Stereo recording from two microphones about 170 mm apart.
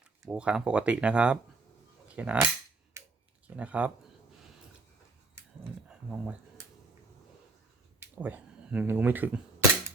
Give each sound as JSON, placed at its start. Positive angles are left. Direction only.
{"t": 0.2, "sound": "speech", "side_deg": -5}
{"t": 3.0, "sound": "computer keyboard", "side_deg": -15}
{"t": 3.4, "sound": "speech", "side_deg": -10}
{"t": 5.9, "sound": "a sound", "side_deg": -10}
{"t": 7.9, "sound": "speech", "side_deg": -10}